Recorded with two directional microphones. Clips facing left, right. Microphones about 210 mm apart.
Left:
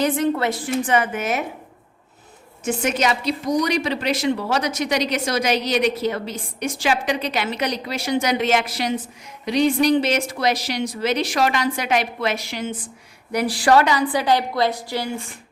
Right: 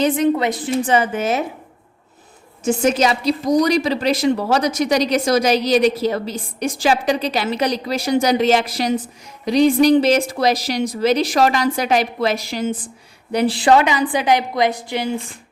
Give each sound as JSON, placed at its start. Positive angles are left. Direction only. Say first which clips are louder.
{"t": 0.0, "sound": "a woman's voice", "louder": "right 3 dB", "side_deg": -15}
{"t": 0.9, "sound": "a woman's voice", "louder": "right 4 dB", "side_deg": -30}
{"t": 2.6, "sound": "a woman's voice", "louder": "right 5 dB", "side_deg": -30}
{"t": 13.3, "sound": "a woman's voice", "louder": "right 3 dB", "side_deg": -25}